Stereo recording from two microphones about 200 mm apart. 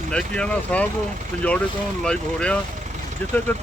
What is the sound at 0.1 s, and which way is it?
Speech, 5° left (ahead or behind).